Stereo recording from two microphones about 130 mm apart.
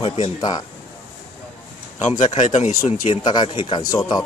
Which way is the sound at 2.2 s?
70° left (ahead or behind).